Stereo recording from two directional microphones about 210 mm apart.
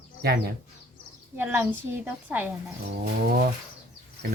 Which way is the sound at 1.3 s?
10° right (ahead or behind).